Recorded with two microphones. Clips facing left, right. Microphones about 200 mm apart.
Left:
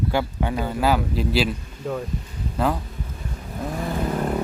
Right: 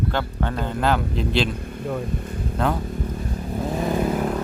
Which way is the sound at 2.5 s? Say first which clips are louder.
Left 1 dB; centre (ahead or behind).